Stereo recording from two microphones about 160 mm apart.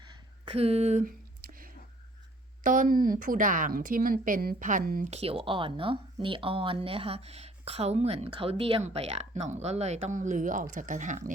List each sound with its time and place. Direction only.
0.4 s speech: 40° right (ahead or behind)
1.4 s whispering: 65° right (ahead or behind)
2.6 s speech: 55° right (ahead or behind)
5.1 s speech: 35° right (ahead or behind)